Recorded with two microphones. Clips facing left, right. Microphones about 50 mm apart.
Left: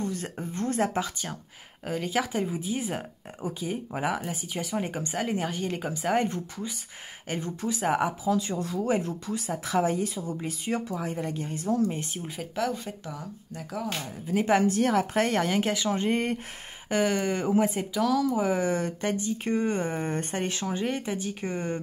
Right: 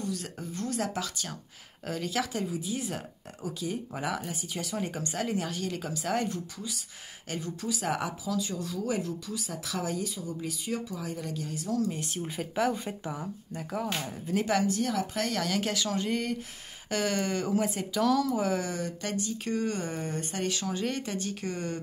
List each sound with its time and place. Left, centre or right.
0.0 s speech: left
8.4 s speech: left
12.2 s speech: centre
14.4 s speech: left
14.7 s speech: left
16.9 s speech: centre
17.9 s speech: centre
18.7 s speech: left